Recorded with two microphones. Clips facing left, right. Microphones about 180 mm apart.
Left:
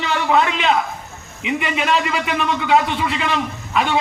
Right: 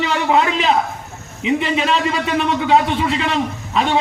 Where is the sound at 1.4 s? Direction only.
30° right (ahead or behind).